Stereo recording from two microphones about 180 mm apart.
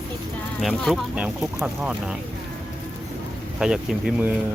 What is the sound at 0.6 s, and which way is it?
Speech, centre (ahead or behind).